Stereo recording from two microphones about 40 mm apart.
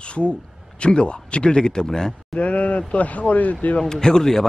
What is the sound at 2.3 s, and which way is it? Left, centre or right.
Speech, left.